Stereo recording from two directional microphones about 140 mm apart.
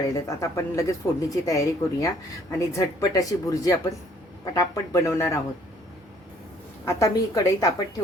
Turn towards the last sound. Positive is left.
turn(degrees=25)  # may be behind; listen again after turning